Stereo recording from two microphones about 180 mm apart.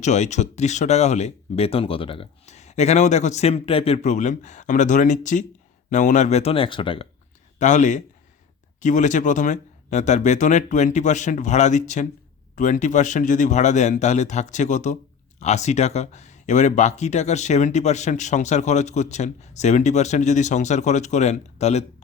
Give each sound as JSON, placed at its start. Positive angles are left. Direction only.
{"t": 0.0, "sound": "speech", "side_deg": 40}
{"t": 7.6, "sound": "speech", "side_deg": 45}